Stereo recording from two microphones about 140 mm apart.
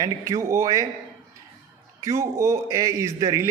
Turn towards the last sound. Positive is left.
turn(degrees=-20)  # may be behind; listen again after turning